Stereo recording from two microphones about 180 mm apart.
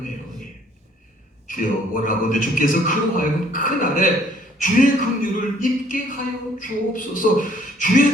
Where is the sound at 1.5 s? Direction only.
50° left (ahead or behind).